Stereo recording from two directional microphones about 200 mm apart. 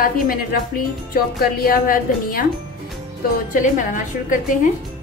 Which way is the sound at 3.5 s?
40° left (ahead or behind).